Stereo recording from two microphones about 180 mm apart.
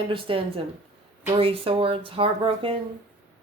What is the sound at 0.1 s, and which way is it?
Speech, 30° right (ahead or behind).